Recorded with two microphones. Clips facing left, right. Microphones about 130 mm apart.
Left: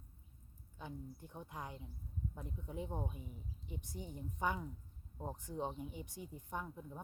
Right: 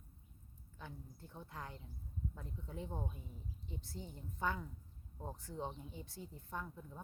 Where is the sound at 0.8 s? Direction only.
15° left (ahead or behind).